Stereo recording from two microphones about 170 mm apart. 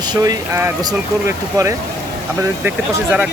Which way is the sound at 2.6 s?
10° right (ahead or behind).